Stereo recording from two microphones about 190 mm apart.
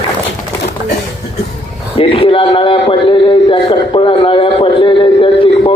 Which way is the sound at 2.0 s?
30° left (ahead or behind).